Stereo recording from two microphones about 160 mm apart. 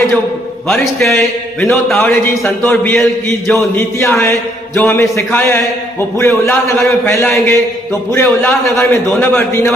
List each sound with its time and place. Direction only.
0.7 s a man's voice: centre (ahead or behind)
3.0 s a man's voice: centre (ahead or behind)
3.8 s a man's voice: 15° left (ahead or behind)